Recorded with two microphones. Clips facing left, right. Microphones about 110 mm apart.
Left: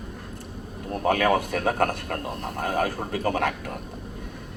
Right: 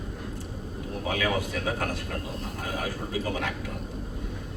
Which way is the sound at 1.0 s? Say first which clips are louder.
Left 7 dB; 55° left (ahead or behind).